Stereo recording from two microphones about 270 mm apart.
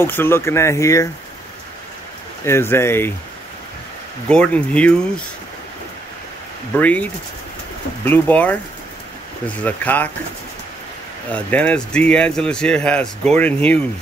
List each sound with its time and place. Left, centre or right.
0.0 s speech: centre
2.4 s speech: centre
4.3 s speech: centre
6.8 s speech: centre
9.6 s speech: centre
11.3 s speech: centre